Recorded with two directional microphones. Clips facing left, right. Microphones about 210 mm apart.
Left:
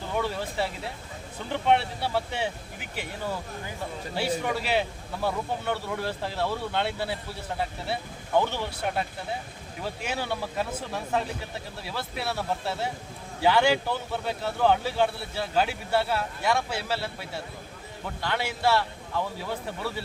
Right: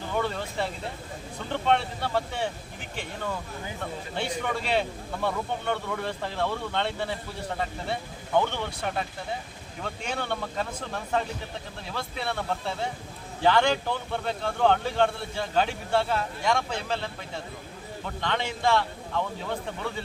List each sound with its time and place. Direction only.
0.2 s speech: 5° left (ahead or behind)
4.1 s speech: 5° left (ahead or behind)
8.4 s speech: 5° left (ahead or behind)